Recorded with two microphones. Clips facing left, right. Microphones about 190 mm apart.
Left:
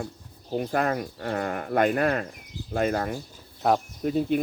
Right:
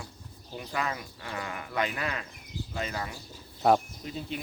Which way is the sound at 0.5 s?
50° left (ahead or behind).